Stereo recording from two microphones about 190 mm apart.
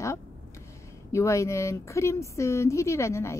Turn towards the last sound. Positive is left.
turn(degrees=15)  # may be behind; listen again after turning